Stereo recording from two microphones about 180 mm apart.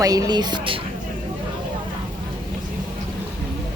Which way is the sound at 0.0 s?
20° right (ahead or behind).